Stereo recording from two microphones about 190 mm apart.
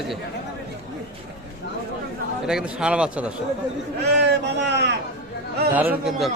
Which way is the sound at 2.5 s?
5° right (ahead or behind).